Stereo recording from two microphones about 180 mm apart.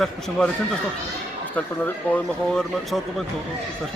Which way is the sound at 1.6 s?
10° left (ahead or behind).